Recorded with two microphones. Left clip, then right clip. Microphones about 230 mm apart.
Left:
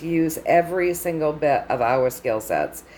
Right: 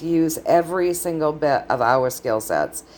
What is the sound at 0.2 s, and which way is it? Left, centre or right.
A woman's voice, centre.